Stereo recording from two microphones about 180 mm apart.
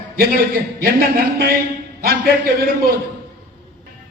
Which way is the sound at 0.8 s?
55° right (ahead or behind).